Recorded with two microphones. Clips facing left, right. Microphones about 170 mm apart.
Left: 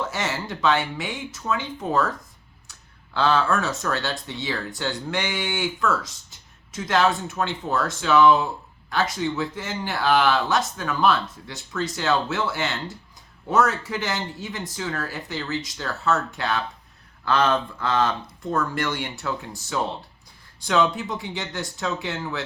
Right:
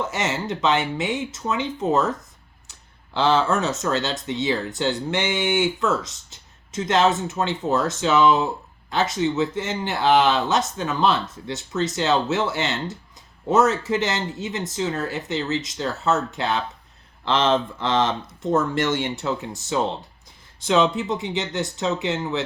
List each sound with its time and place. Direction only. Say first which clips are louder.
0.0 s speech: right 3 dB; 20° right (ahead or behind)
3.2 s speech: right 2 dB; 20° right (ahead or behind)